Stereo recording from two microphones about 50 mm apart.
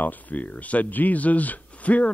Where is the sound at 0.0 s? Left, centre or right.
Left.